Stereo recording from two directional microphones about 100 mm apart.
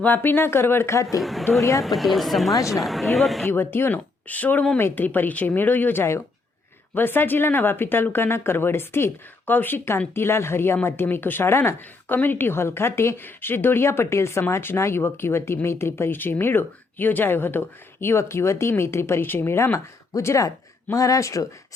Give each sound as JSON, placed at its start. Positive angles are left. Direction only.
{"t": 0.0, "sound": "speech", "side_deg": 20}
{"t": 1.2, "sound": "speech", "side_deg": 0}
{"t": 2.5, "sound": "speech", "side_deg": 35}
{"t": 2.7, "sound": "speech", "side_deg": 0}
{"t": 3.4, "sound": "speech", "side_deg": 20}